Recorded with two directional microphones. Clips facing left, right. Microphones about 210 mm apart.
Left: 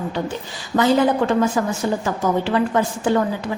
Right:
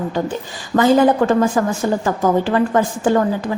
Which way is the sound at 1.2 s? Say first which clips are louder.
Right 3 dB; 45° right (ahead or behind).